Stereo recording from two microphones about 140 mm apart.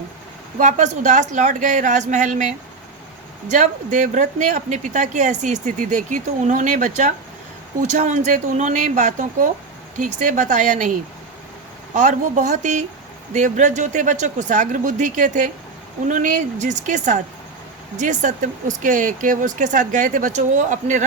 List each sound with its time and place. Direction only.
0.6 s speech: 55° right (ahead or behind)
11.9 s speech: 60° right (ahead or behind)